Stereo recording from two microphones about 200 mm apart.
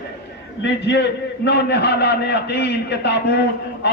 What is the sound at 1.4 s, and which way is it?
A man's voice, 60° left (ahead or behind).